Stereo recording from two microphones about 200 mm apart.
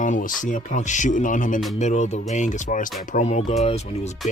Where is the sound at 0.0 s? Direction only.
40° left (ahead or behind).